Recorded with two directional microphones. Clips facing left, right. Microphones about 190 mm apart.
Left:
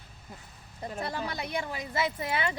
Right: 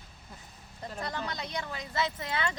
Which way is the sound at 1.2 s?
10° left (ahead or behind).